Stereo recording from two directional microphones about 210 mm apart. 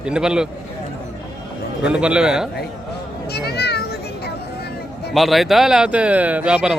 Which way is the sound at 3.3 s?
50° left (ahead or behind).